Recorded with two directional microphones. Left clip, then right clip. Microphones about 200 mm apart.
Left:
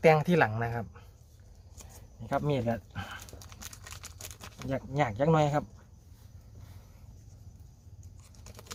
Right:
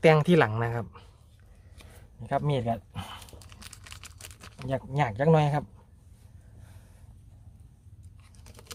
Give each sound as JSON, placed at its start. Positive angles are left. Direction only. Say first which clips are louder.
{"t": 0.0, "sound": "a man's voice", "louder": "right 2 dB", "side_deg": -45}
{"t": 2.2, "sound": "speech", "louder": "right 2 dB", "side_deg": -50}
{"t": 3.5, "sound": "a sound", "louder": "even", "side_deg": 0}
{"t": 4.7, "sound": "a man's voice", "louder": "right 2 dB", "side_deg": -50}